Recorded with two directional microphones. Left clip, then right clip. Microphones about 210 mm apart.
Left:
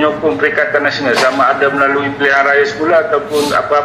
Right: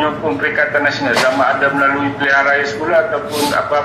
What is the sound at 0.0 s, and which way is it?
A man's voice, 25° left (ahead or behind).